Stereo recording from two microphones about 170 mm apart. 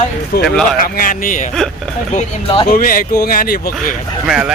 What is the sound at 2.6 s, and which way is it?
Speech, 55° left (ahead or behind).